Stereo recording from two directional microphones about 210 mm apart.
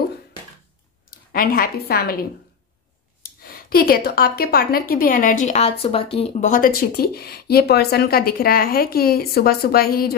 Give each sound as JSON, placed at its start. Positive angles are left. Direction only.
{"t": 1.3, "sound": "a woman's voice", "side_deg": 45}
{"t": 3.4, "sound": "a woman's voice", "side_deg": 45}